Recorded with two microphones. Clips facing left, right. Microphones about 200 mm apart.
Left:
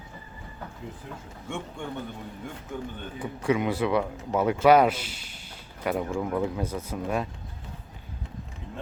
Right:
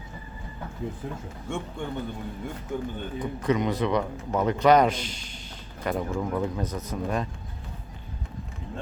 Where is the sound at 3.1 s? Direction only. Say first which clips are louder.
Even; 10° left (ahead or behind).